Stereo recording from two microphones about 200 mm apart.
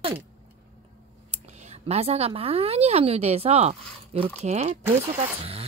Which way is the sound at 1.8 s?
30° right (ahead or behind).